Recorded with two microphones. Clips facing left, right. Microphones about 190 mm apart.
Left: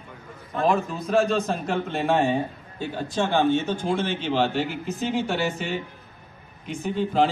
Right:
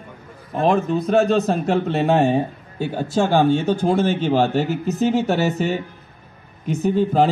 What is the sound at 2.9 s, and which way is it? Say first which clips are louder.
A man's voice: right 6 dB; 45° right (ahead or behind).